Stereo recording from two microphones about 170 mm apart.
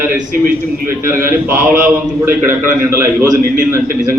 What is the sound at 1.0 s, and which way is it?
A man's voice, 15° right (ahead or behind).